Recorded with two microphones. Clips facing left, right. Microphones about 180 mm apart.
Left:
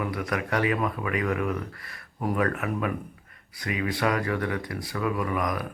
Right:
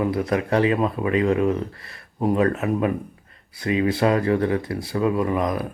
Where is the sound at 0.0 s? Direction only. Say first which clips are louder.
Right 7 dB; 30° right (ahead or behind).